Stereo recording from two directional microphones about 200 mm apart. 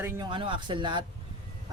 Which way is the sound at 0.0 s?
20° right (ahead or behind).